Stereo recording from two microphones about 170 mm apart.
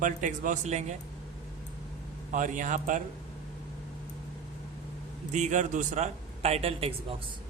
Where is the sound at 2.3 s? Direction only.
50° right (ahead or behind).